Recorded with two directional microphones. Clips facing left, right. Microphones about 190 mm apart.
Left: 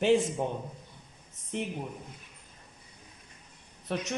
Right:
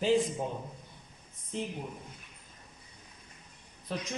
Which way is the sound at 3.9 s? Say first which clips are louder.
Left 4 dB; 65° left (ahead or behind).